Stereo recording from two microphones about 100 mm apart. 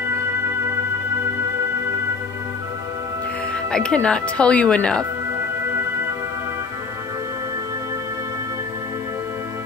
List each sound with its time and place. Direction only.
3.7 s speech: 10° left (ahead or behind)